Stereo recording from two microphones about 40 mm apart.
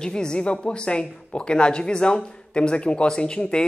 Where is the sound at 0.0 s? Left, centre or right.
Centre.